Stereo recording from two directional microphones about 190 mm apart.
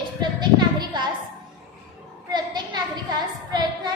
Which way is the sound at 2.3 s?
20° right (ahead or behind).